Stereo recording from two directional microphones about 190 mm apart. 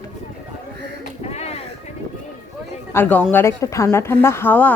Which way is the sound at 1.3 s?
35° left (ahead or behind).